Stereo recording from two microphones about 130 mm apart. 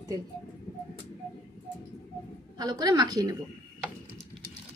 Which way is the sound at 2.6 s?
30° right (ahead or behind).